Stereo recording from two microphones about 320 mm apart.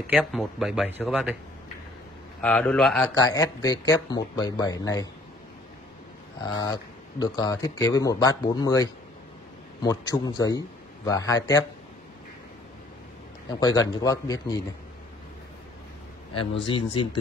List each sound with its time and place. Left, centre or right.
0.0 s speech: centre
2.4 s speech: centre
6.5 s speech: centre
13.6 s speech: centre
16.3 s speech: left
16.7 s speech: centre